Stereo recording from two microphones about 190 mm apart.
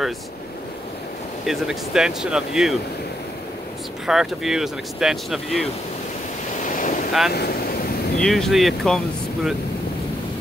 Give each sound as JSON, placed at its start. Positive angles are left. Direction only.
{"t": 1.4, "sound": "speech", "side_deg": 0}
{"t": 4.0, "sound": "speech", "side_deg": 0}
{"t": 6.6, "sound": "boat", "side_deg": 45}
{"t": 7.1, "sound": "speech", "side_deg": 0}
{"t": 7.3, "sound": "wind", "side_deg": 55}
{"t": 8.2, "sound": "speech", "side_deg": 0}